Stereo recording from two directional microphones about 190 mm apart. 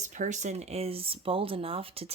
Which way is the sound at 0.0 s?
40° right (ahead or behind).